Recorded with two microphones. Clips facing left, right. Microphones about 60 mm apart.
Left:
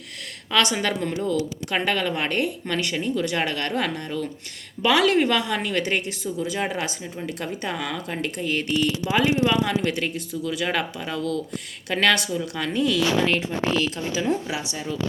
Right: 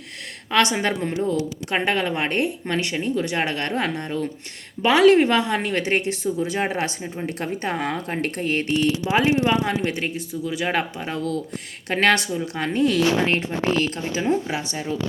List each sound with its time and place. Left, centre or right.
0.5 s a woman's voice: right